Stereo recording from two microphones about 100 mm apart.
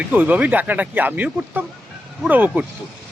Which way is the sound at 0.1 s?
15° right (ahead or behind).